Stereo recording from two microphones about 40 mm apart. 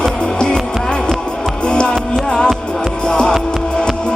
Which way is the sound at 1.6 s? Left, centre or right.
Left.